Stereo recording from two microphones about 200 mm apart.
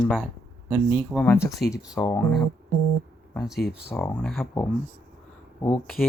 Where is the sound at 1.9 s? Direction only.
20° left (ahead or behind).